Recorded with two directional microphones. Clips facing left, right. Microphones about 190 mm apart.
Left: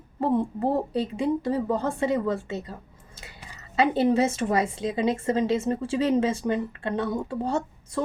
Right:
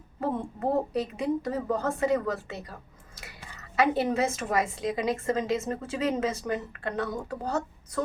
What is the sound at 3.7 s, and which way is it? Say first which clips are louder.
A woman's voice: left 4 dB; 30° left (ahead or behind).